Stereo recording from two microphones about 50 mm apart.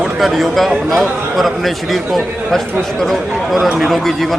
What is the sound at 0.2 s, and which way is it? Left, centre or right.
A man's voice, centre.